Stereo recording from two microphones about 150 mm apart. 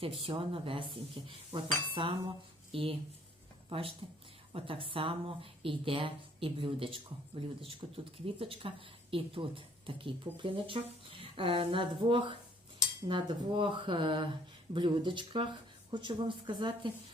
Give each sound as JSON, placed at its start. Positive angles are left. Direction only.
{"t": 0.3, "sound": "a woman's voice", "side_deg": -35}
{"t": 4.0, "sound": "a woman's voice", "side_deg": -35}